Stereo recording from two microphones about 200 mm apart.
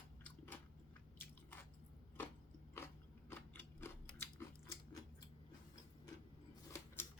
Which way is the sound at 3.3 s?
10° left (ahead or behind).